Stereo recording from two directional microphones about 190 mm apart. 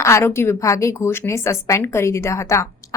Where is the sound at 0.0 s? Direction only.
15° left (ahead or behind).